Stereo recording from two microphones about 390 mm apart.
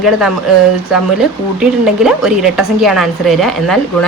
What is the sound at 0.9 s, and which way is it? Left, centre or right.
Speech, centre.